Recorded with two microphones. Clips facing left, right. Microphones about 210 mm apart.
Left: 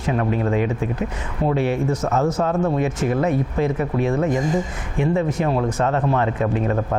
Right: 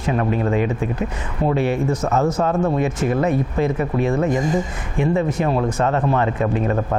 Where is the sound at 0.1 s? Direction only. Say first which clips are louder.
Right 1 dB; 20° right (ahead or behind).